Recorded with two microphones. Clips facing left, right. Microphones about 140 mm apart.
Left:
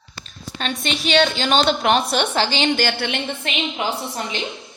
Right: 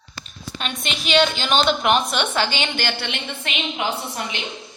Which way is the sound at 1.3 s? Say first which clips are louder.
Left 2 dB; 35° left (ahead or behind).